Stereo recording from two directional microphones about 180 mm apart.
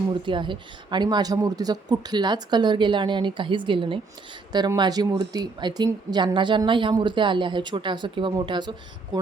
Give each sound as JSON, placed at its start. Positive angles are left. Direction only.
{"t": 0.1, "sound": "speech", "side_deg": -25}